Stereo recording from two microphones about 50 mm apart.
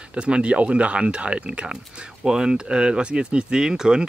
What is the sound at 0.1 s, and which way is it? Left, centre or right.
Speech, right.